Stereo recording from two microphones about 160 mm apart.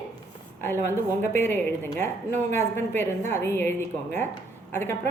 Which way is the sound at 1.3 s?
15° left (ahead or behind).